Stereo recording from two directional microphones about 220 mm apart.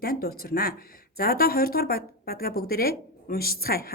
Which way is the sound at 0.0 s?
45° left (ahead or behind).